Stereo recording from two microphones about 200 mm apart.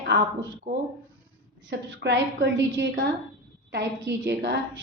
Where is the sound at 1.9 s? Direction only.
65° right (ahead or behind).